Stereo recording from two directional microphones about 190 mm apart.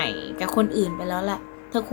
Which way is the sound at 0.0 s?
10° left (ahead or behind).